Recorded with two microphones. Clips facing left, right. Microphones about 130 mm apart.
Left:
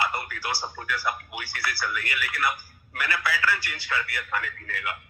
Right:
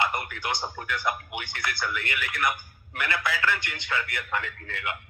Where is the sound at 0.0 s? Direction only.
20° right (ahead or behind).